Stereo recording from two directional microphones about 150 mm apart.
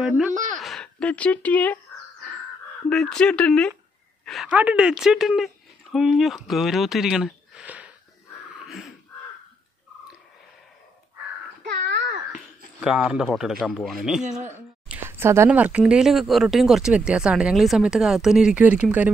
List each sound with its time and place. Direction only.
0.3 s a sound: 60° right (ahead or behind)
0.6 s speech: centre (ahead or behind)
2.9 s a woman's voice: 5° left (ahead or behind)
8.6 s wheeze: centre (ahead or behind)
12.8 s speech: 5° right (ahead or behind)
14.9 s speech: 15° right (ahead or behind)